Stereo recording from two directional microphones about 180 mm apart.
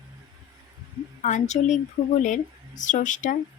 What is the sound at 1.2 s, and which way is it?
A woman's voice, 40° left (ahead or behind).